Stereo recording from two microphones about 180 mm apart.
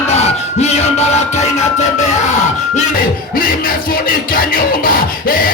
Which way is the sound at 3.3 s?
50° left (ahead or behind).